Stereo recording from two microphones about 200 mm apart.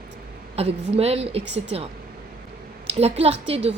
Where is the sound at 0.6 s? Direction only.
30° right (ahead or behind).